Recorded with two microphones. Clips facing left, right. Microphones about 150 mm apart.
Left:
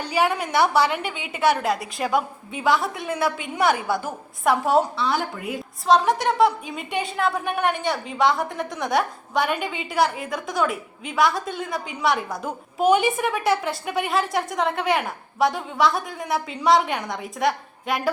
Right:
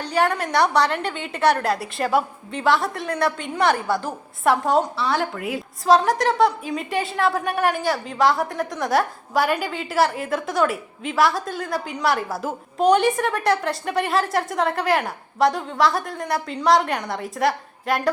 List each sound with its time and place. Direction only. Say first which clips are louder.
0.0 s a woman's voice: right 1 dB; 5° left (ahead or behind)